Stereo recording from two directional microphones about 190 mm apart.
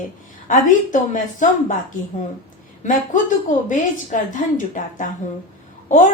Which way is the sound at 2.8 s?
40° left (ahead or behind).